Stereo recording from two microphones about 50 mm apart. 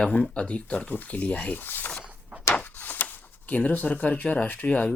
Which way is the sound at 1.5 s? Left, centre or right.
Left.